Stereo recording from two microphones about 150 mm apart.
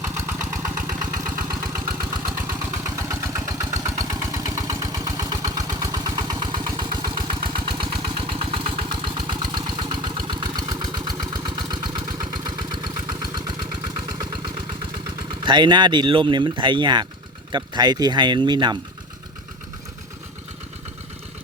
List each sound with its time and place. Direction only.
0.0 s engine: 15° right (ahead or behind)
2.5 s vehicle: 20° right (ahead or behind)
17.5 s speech: 30° right (ahead or behind)